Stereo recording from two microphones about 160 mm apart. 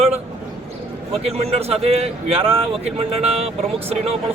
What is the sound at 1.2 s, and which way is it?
Speech, 40° right (ahead or behind).